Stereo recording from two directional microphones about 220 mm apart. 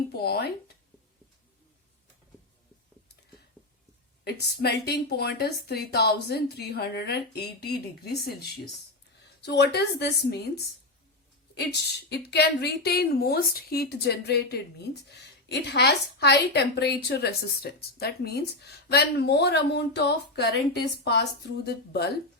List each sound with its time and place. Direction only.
0.1 s a woman's voice: 45° left (ahead or behind)
3.6 s a sound: 5° left (ahead or behind)
4.2 s a woman's voice: 50° left (ahead or behind)